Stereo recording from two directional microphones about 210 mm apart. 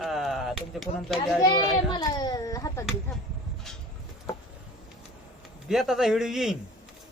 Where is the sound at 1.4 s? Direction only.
20° left (ahead or behind).